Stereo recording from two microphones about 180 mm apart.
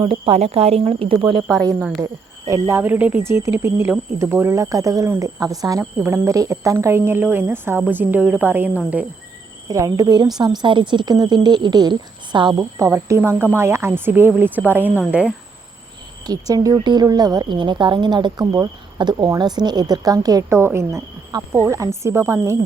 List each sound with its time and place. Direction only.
0.0 s speech: 35° right (ahead or behind)
2.5 s speech: 15° right (ahead or behind)
9.6 s speech: 20° right (ahead or behind)
16.2 s speech: 20° right (ahead or behind)